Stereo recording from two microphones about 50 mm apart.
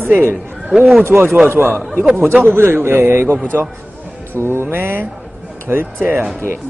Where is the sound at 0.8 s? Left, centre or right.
Centre.